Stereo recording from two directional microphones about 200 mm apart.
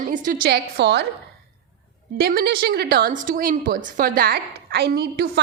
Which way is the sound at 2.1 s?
50° right (ahead or behind).